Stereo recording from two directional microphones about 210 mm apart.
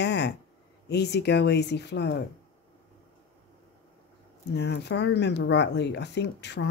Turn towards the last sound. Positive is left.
turn(degrees=55)  # may be behind; listen again after turning